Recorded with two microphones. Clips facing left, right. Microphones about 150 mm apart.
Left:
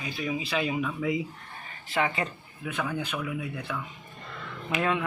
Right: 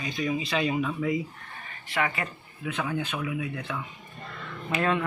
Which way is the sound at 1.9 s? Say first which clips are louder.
Left 1 dB; 25° left (ahead or behind).